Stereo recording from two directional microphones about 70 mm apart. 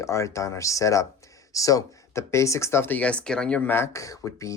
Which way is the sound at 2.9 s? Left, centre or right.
Centre.